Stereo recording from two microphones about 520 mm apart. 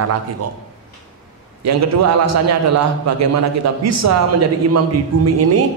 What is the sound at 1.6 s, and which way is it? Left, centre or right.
A man's voice, right.